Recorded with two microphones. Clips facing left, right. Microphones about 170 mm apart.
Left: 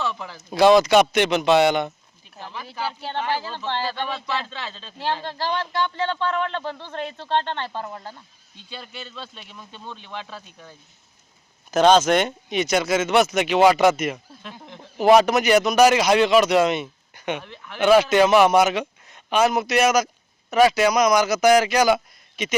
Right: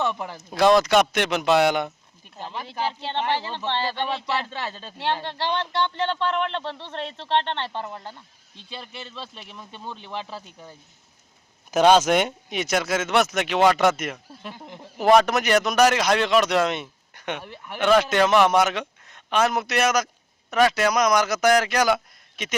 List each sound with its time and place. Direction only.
0.5 s speech: centre (ahead or behind)
2.4 s speech: 20° right (ahead or behind)
5.9 s speech: 20° right (ahead or behind)
6.6 s speech: 10° left (ahead or behind)
7.4 s speech: 20° right (ahead or behind)
7.8 s speech: 10° left (ahead or behind)
8.5 s speech: 25° right (ahead or behind)
9.3 s speech: centre (ahead or behind)
10.2 s speech: 30° right (ahead or behind)
11.7 s speech: 10° right (ahead or behind)
17.4 s speech: 10° right (ahead or behind)
17.7 s speech: 5° left (ahead or behind)